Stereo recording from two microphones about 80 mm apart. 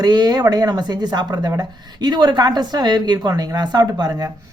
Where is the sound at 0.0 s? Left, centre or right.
Right.